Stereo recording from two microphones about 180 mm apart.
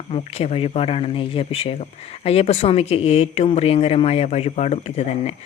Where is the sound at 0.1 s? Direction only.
35° left (ahead or behind).